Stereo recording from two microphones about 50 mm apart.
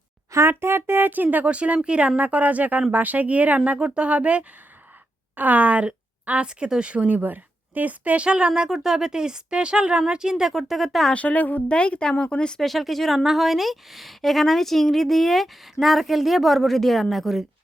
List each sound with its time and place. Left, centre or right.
0.3 s speech: right
1.1 s speech: right
1.5 s speech: right
2.1 s speech: right
7.2 s speech: right; by 10.5 s centre
10.5 s a woman's voice: centre
11.1 s speech: left
11.7 s speech: left
12.6 s a woman's voice: centre